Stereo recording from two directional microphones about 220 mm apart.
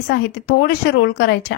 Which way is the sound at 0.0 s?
45° left (ahead or behind).